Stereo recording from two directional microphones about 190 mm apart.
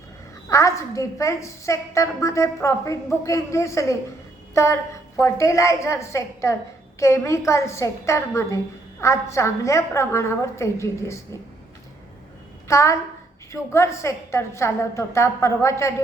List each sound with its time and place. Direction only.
0.5 s a woman's voice: 15° left (ahead or behind)
12.6 s a woman's voice: 15° left (ahead or behind)